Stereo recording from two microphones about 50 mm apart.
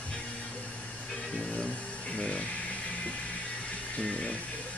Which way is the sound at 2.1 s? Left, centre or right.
Left.